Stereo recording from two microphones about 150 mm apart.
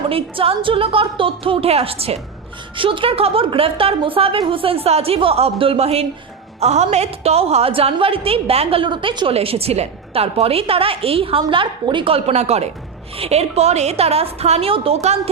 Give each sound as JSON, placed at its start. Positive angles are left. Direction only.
{"t": 0.1, "sound": "a woman's voice", "side_deg": -40}